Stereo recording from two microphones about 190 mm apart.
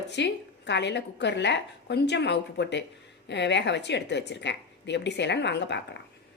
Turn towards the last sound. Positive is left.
turn(degrees=65)  # may be behind; listen again after turning